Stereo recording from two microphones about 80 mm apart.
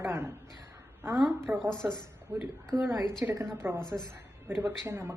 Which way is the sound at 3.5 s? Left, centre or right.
Right.